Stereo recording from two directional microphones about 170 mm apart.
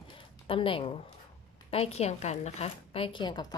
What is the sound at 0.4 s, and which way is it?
A woman's voice, 30° left (ahead or behind).